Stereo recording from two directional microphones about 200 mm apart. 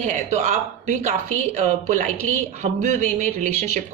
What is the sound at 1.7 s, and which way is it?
Speech, 35° right (ahead or behind).